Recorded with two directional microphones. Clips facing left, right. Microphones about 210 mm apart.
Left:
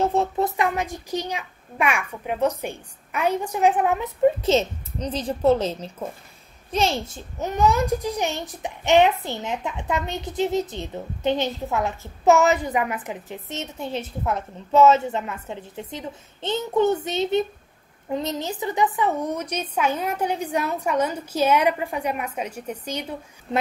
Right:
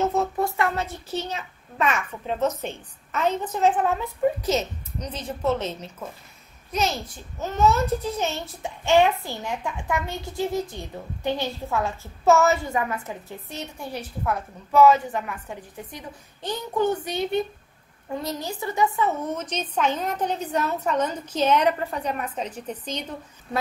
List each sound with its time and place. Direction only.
0.0 s a child's voice: 30° left (ahead or behind); by 23.1 s 10° left (ahead or behind)